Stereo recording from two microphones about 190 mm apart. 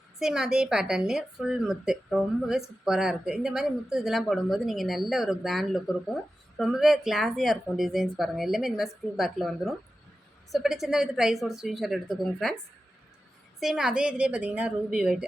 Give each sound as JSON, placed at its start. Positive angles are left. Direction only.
{"t": 0.2, "sound": "a woman's voice", "side_deg": -5}
{"t": 13.6, "sound": "a woman's voice", "side_deg": 0}